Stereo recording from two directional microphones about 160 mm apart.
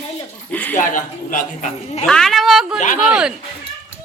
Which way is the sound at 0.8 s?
55° left (ahead or behind).